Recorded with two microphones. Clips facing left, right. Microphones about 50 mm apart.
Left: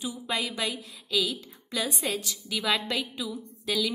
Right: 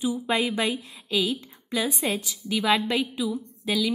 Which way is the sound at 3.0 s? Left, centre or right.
Centre.